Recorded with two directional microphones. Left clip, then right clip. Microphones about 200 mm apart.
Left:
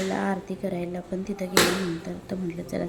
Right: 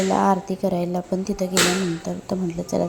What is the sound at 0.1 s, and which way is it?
A woman's voice, 20° right (ahead or behind).